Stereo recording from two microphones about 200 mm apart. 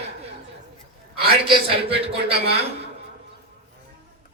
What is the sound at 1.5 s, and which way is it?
Speech, 30° right (ahead or behind).